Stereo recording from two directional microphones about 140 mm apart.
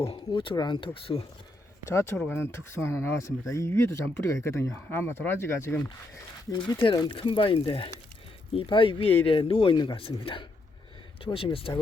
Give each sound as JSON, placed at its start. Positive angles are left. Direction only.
{"t": 0.0, "sound": "speech", "side_deg": 40}
{"t": 1.9, "sound": "speech", "side_deg": 20}
{"t": 6.5, "sound": "speech", "side_deg": 35}
{"t": 7.2, "sound": "speech", "side_deg": 40}